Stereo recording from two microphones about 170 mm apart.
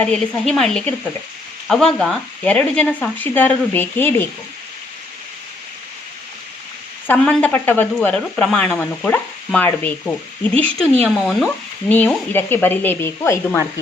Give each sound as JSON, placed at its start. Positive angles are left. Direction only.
{"t": 0.0, "sound": "speech", "side_deg": 5}
{"t": 7.1, "sound": "speech", "side_deg": 10}